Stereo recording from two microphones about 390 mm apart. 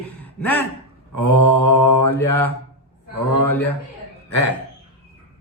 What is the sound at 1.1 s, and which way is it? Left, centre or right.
Speech, left.